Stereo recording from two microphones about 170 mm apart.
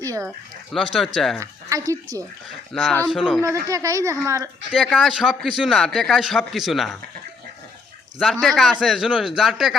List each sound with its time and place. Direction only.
0.0 s a sound: 20° right (ahead or behind)
0.3 s a man's voice: centre (ahead or behind)
1.7 s a woman's voice: 20° right (ahead or behind)
2.7 s a man's voice: centre (ahead or behind)
3.4 s speech: 20° right (ahead or behind)
4.7 s a man's voice: centre (ahead or behind)
8.2 s a man's voice: centre (ahead or behind)